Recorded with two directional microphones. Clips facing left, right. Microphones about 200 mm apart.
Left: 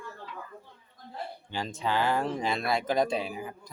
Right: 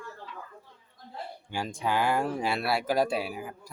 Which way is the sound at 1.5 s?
10° right (ahead or behind).